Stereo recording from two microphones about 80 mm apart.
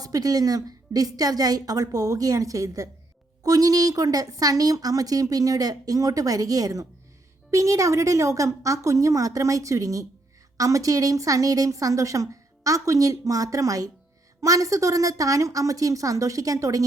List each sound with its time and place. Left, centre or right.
0.0 s a woman's voice: right